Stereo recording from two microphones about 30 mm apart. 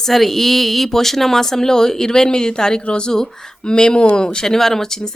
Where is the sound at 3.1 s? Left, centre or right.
Centre.